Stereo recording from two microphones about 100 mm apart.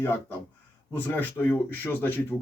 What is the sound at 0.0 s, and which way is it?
Speech, 20° left (ahead or behind).